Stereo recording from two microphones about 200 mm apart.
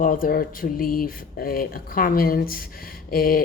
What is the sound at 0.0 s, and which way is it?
Speech, 45° left (ahead or behind).